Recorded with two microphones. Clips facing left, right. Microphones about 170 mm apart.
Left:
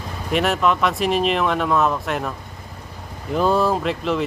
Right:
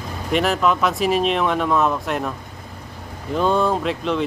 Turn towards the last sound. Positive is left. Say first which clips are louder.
# even
turn(degrees=0)  # may be behind; listen again after turning